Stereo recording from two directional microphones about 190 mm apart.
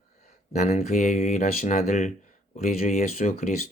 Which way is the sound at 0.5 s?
35° left (ahead or behind).